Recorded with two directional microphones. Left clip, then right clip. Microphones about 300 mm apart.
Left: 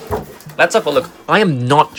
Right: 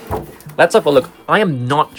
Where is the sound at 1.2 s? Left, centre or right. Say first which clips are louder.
Left 1 dB; centre.